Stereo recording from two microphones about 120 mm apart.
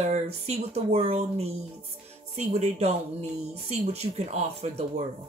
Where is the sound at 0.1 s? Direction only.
60° right (ahead or behind).